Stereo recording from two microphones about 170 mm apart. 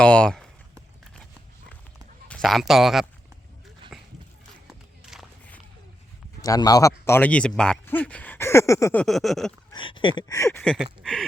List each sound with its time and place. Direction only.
0.0 s speech: 5° left (ahead or behind)
2.2 s speech: 5° left (ahead or behind)
3.9 s splash: centre (ahead or behind)
6.4 s speech: 20° left (ahead or behind); by 9.5 s centre (ahead or behind)
9.7 s a sound: 30° left (ahead or behind)
10.6 s speech: 5° left (ahead or behind)